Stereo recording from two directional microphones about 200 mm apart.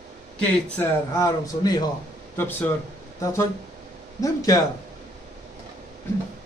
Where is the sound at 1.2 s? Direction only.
20° left (ahead or behind).